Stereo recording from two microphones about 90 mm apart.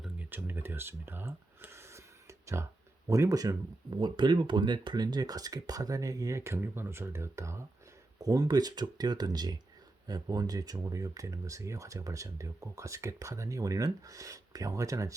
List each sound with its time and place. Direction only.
0.2 s a sound: 20° right (ahead or behind)
3.1 s speech: 40° right (ahead or behind)
3.8 s speech: 60° right (ahead or behind); by 7.6 s 30° right (ahead or behind)
8.2 s speech: 45° right (ahead or behind)